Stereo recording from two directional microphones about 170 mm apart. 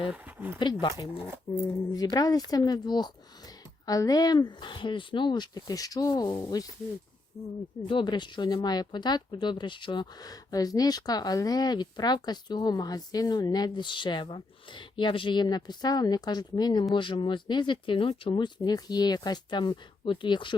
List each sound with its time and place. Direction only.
0.1 s speech: 10° right (ahead or behind)
0.6 s speech: 25° left (ahead or behind)
7.9 s speech: 30° left (ahead or behind)